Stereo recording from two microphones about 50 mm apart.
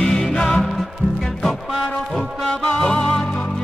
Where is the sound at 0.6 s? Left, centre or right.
Centre.